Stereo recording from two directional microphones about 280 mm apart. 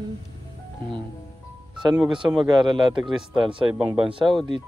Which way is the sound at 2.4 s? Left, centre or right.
Centre.